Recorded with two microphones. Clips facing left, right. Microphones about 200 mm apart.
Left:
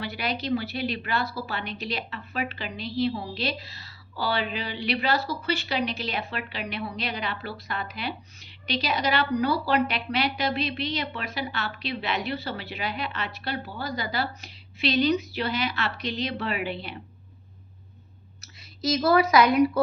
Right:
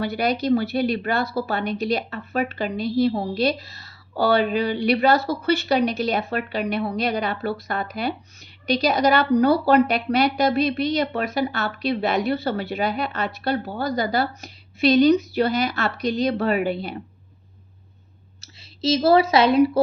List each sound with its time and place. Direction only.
0.0 s a woman's voice: 40° right (ahead or behind)
18.3 s speech: 25° right (ahead or behind)